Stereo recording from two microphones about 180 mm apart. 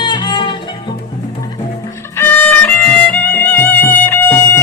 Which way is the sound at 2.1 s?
10° left (ahead or behind).